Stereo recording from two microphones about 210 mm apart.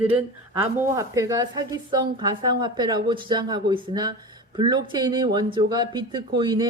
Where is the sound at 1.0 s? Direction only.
15° right (ahead or behind).